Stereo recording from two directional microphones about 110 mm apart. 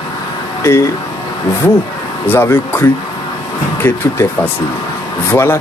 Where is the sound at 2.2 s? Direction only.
20° left (ahead or behind).